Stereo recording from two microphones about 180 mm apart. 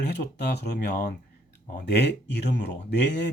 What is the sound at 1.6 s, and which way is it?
Speech, 55° left (ahead or behind).